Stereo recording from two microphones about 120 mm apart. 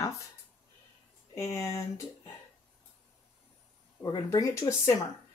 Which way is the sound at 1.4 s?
25° left (ahead or behind).